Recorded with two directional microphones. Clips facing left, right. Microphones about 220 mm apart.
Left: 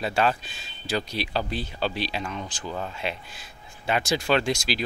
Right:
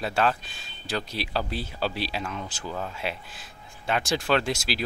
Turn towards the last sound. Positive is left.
turn(degrees=-5)  # may be behind; listen again after turning